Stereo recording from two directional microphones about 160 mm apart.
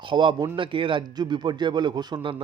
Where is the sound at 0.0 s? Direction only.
30° right (ahead or behind).